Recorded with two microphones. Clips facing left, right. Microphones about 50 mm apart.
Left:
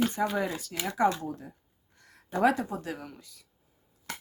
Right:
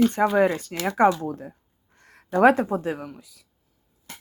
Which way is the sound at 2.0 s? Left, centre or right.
Right.